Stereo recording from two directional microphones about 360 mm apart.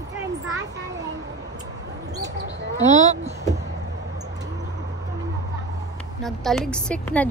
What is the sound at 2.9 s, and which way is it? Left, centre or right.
Speech, centre.